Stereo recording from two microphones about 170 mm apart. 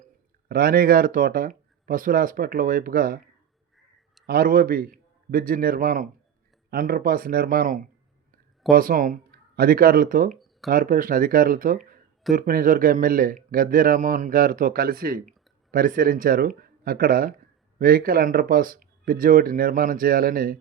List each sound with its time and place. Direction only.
0.4 s speech: 60° right (ahead or behind)
4.3 s speech: 60° right (ahead or behind)